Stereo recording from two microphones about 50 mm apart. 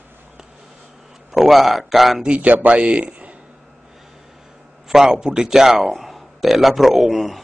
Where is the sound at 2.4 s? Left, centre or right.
Right.